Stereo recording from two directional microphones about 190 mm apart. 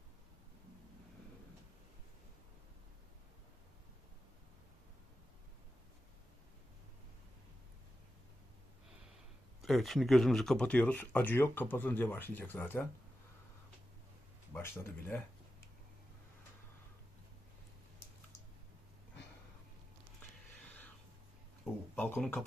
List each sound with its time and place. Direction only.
9.6 s speech: centre (ahead or behind)
14.5 s speech: 10° left (ahead or behind)
21.6 s a sound: 10° left (ahead or behind)